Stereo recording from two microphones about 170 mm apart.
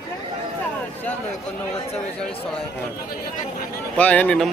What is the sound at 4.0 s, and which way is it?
Speech, 10° left (ahead or behind).